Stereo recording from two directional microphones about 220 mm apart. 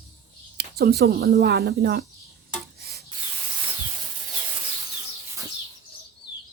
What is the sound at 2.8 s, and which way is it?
Rub, 45° right (ahead or behind).